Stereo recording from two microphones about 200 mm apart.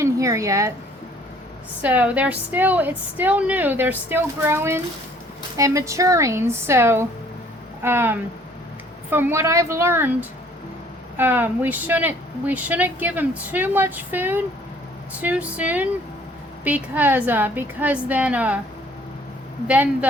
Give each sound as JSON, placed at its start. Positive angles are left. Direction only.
{"t": 0.0, "sound": "a sound", "side_deg": -15}
{"t": 1.8, "sound": "speech", "side_deg": -5}
{"t": 19.6, "sound": "speech", "side_deg": -5}